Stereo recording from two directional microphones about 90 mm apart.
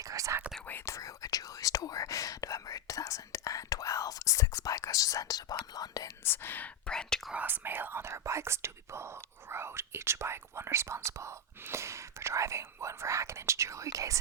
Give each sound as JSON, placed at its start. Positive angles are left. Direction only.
{"t": 0.0, "sound": "speech", "side_deg": -40}
{"t": 0.9, "sound": "speech", "side_deg": 35}
{"t": 6.2, "sound": "speech", "side_deg": 25}
{"t": 6.9, "sound": "speech", "side_deg": 10}
{"t": 7.3, "sound": "speech", "side_deg": -20}